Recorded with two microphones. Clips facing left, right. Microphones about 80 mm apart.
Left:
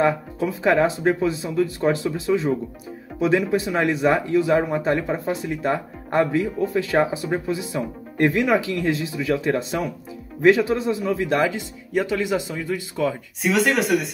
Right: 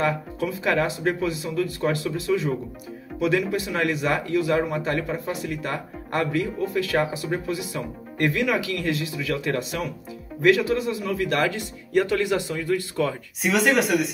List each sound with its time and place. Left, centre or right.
0.7 s speech: left
13.4 s speech: centre